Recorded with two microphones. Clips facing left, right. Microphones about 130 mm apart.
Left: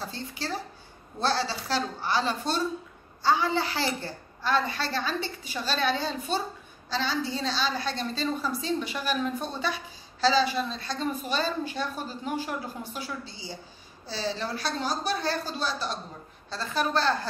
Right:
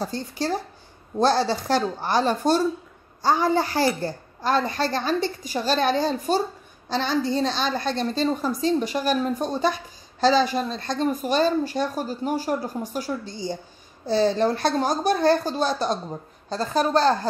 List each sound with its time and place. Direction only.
0.0 s a woman's voice: 40° right (ahead or behind)